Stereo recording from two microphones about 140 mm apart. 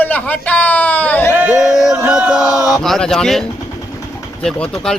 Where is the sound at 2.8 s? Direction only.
5° left (ahead or behind).